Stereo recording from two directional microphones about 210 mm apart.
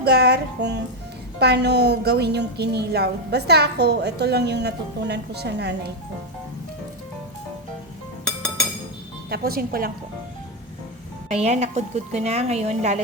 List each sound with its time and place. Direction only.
0.0 s a woman's voice: 50° right (ahead or behind)
9.3 s a woman's voice: 45° right (ahead or behind)
11.3 s a woman's voice: 30° right (ahead or behind)